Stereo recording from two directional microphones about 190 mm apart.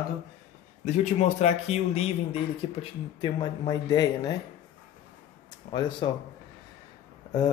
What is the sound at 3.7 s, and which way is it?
Speech, 20° left (ahead or behind).